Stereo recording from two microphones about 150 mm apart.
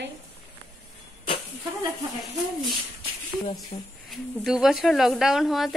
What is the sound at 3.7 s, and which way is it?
Speech, 35° left (ahead or behind).